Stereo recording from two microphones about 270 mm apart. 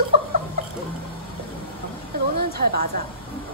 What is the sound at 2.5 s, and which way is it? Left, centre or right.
Speech, right.